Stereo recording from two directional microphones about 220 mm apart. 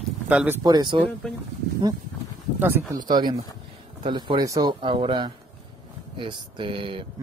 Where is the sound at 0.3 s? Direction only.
10° right (ahead or behind).